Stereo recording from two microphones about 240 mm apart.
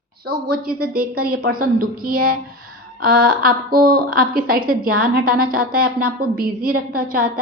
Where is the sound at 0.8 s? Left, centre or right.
Right.